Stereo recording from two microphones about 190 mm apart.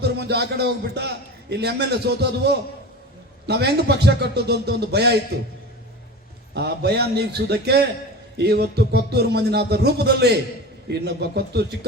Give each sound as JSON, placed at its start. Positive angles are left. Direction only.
{"t": 0.0, "sound": "a man's voice", "side_deg": -60}
{"t": 6.5, "sound": "a man's voice", "side_deg": -60}